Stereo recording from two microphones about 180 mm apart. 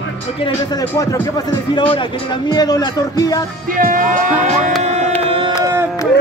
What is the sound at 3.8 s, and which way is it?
Speech, 50° right (ahead or behind).